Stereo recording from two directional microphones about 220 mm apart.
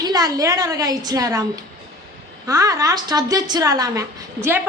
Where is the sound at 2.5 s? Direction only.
15° right (ahead or behind).